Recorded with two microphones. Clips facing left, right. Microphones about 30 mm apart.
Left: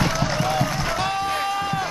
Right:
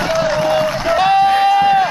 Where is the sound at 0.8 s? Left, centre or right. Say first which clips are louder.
Right 12 dB; right.